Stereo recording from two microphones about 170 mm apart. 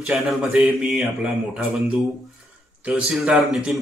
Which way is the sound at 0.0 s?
Centre (ahead or behind).